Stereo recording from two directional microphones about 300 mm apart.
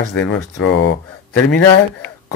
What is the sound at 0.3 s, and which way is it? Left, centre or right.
Speech, left.